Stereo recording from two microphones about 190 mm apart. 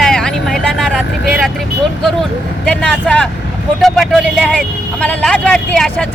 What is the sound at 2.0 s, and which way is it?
Speech, 5° left (ahead or behind).